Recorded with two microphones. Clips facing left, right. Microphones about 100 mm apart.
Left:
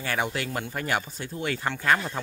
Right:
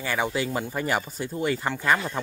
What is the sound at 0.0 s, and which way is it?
Speech, centre (ahead or behind).